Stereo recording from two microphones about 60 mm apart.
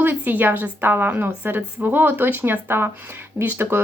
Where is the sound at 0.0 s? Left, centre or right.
Right.